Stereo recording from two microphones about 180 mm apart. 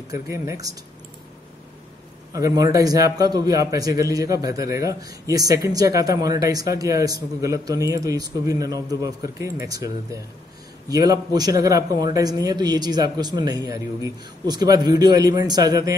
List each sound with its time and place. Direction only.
0.1 s a man's voice: 15° right (ahead or behind)
2.3 s a man's voice: 20° right (ahead or behind)